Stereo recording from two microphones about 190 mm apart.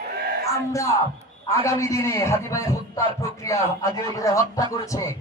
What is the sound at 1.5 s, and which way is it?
Speech, 15° left (ahead or behind).